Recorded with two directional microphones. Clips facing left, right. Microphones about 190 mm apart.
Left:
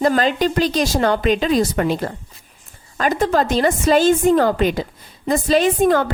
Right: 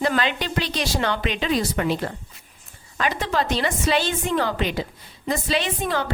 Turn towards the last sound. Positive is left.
turn(degrees=50)  # may be behind; listen again after turning